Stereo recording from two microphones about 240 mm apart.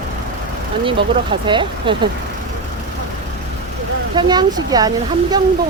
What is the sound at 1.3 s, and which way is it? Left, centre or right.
Speech, right.